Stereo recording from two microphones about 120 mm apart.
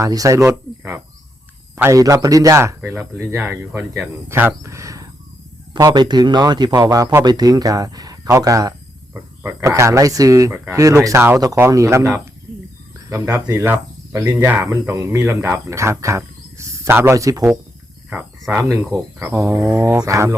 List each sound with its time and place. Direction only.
0.0 s speech: 30° right (ahead or behind)
1.7 s speech: 25° right (ahead or behind)
5.7 s speech: 35° right (ahead or behind)
13.1 s speech: 25° right (ahead or behind)
14.6 s speech: 25° right (ahead or behind)